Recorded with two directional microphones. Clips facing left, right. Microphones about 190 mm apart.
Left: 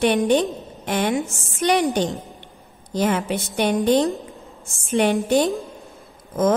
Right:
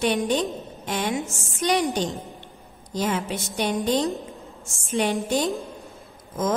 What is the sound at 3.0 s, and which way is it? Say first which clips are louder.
A woman's voice: left 5 dB; 60° left (ahead or behind).